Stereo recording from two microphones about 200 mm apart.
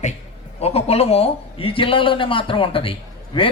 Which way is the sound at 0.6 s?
30° left (ahead or behind).